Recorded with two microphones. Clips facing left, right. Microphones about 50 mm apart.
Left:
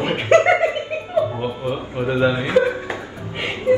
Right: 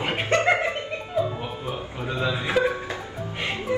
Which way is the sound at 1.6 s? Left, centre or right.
Left.